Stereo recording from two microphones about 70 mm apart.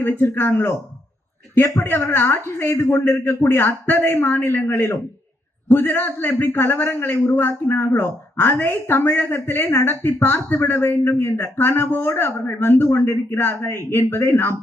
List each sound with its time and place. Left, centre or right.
0.0 s a man's voice: left